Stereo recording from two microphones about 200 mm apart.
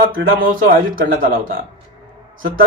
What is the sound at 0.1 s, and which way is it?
Speech, 45° right (ahead or behind).